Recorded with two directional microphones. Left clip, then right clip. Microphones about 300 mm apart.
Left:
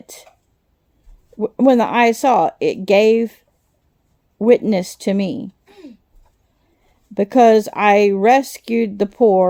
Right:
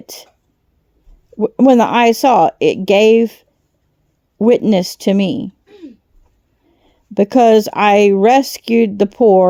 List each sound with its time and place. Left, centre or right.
0.0 s a sound: right
1.4 s speech: right
7.1 s speech: right